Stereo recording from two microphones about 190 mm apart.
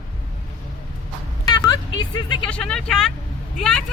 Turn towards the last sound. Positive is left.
turn(degrees=5)  # may be behind; listen again after turning